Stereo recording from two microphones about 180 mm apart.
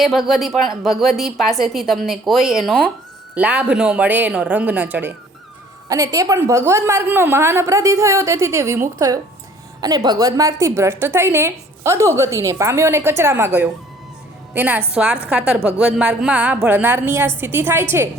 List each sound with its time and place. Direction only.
0.0 s a woman's voice: centre (ahead or behind)
3.3 s a woman's voice: 10° right (ahead or behind)